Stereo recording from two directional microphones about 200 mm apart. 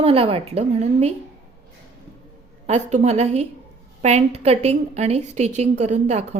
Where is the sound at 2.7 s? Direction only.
35° right (ahead or behind).